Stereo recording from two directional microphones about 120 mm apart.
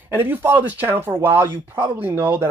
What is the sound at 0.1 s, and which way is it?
Speech, 15° right (ahead or behind).